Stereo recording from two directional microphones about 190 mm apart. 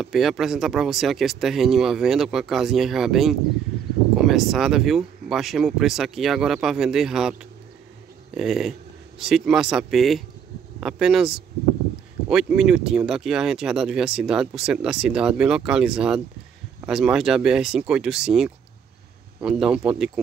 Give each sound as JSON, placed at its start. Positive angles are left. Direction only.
{"t": 0.0, "sound": "speech", "side_deg": 0}